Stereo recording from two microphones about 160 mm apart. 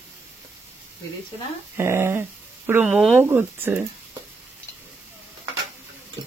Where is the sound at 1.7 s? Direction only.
15° right (ahead or behind).